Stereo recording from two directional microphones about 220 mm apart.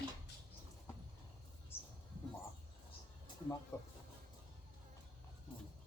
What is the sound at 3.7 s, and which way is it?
Speech, 15° left (ahead or behind).